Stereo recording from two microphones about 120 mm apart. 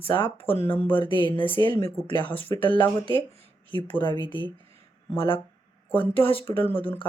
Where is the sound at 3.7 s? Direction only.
40° left (ahead or behind).